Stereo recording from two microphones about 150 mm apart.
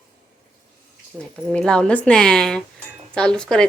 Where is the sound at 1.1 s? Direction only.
5° right (ahead or behind).